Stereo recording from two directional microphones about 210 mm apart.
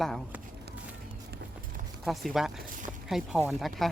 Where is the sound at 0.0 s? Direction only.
Centre (ahead or behind).